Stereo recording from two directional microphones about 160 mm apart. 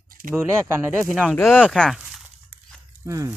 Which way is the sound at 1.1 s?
Centre (ahead or behind).